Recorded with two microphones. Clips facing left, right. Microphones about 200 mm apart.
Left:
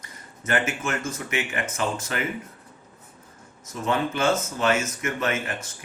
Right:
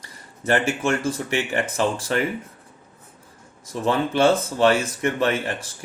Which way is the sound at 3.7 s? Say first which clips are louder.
Right 3 dB; 30° right (ahead or behind).